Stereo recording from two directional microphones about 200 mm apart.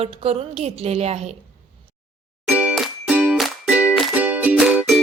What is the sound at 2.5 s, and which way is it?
Music, 5° right (ahead or behind).